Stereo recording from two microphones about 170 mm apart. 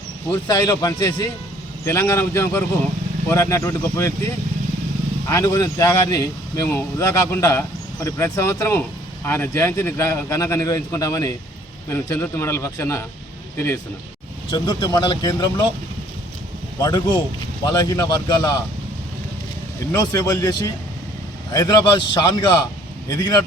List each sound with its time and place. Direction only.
0.3 s speech: 20° left (ahead or behind)
5.3 s speech: 20° left (ahead or behind)
14.5 s speech: 25° left (ahead or behind)
16.8 s speech: 25° left (ahead or behind)
19.9 s speech: 20° left (ahead or behind)